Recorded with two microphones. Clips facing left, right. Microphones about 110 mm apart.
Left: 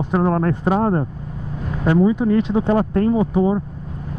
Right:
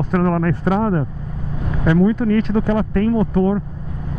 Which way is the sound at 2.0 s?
15° left (ahead or behind).